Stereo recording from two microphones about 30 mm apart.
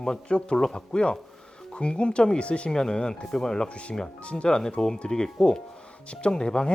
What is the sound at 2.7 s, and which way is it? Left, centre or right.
Speech, left.